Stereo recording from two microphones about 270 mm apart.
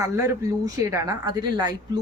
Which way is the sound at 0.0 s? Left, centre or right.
Centre.